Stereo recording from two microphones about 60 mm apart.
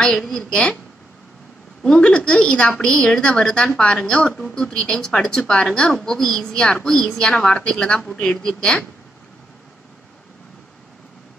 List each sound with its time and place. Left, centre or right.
0.0 s a woman's voice: centre
1.9 s a woman's voice: centre